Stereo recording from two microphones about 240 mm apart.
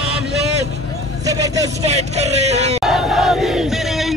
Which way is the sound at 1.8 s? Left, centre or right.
Right.